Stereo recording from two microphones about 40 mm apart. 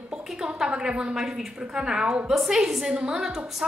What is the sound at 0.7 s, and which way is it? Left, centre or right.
A woman's voice, right.